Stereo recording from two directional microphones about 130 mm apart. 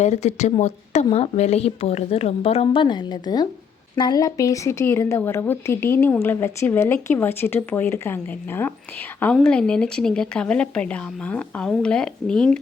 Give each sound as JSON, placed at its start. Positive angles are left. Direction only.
{"t": 0.0, "sound": "a woman's voice", "side_deg": 60}